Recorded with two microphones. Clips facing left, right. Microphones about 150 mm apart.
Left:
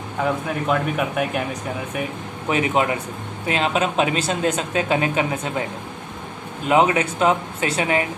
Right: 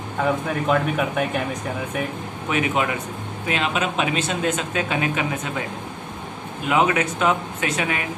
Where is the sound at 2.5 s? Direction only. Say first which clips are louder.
Left 2 dB; 35° left (ahead or behind).